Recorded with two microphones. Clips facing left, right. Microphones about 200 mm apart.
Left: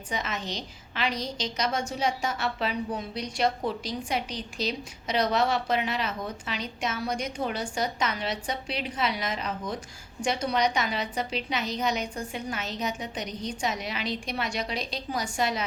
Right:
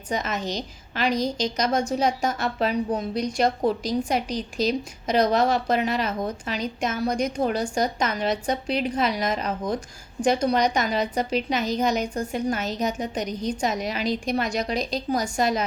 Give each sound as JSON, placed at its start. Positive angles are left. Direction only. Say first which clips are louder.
{"t": 0.1, "sound": "a woman's voice", "louder": "right 6 dB", "side_deg": -40}